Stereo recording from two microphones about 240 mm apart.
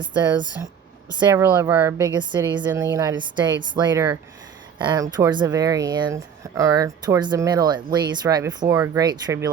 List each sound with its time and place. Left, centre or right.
0.0 s speech: centre